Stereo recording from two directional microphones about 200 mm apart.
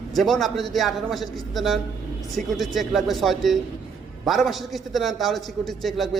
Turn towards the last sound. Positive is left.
turn(degrees=0)  # may be behind; listen again after turning